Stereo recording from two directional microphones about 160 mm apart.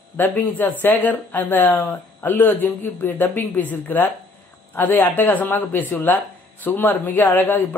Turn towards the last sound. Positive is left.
turn(degrees=10)  # may be behind; listen again after turning